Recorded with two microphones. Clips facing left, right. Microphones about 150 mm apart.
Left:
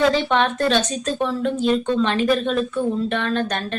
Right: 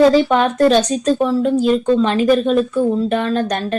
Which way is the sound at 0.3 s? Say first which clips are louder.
Right 6 dB; 40° right (ahead or behind).